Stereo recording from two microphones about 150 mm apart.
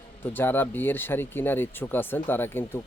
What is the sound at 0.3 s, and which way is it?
Speech, 15° left (ahead or behind).